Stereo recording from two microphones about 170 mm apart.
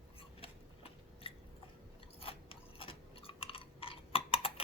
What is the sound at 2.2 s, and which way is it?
Chewing, 35° left (ahead or behind).